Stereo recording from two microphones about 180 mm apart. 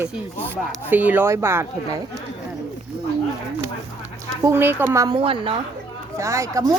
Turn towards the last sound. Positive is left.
turn(degrees=-15)  # may be behind; listen again after turning